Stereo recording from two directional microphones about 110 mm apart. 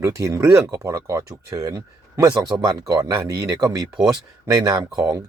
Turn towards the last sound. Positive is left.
turn(degrees=-30)  # may be behind; listen again after turning